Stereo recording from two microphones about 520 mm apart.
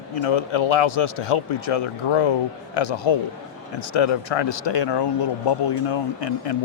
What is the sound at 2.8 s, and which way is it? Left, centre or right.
Speech, left.